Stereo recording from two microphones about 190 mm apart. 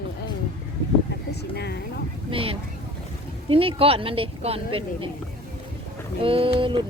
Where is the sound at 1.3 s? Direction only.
60° left (ahead or behind).